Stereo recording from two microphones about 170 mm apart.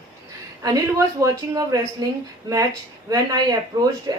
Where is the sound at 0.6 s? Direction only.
20° right (ahead or behind).